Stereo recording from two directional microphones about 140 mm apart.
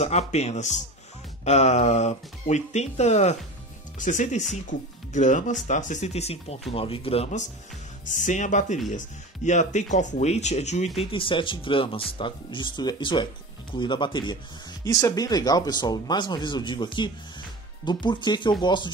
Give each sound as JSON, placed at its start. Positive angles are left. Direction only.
{"t": 0.0, "sound": "speech", "side_deg": 50}
{"t": 8.1, "sound": "speech", "side_deg": 65}
{"t": 11.0, "sound": "speech", "side_deg": 40}